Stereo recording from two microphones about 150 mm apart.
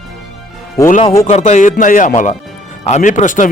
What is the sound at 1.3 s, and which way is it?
Speech, 50° left (ahead or behind).